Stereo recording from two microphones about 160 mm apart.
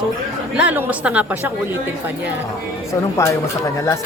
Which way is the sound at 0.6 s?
10° right (ahead or behind).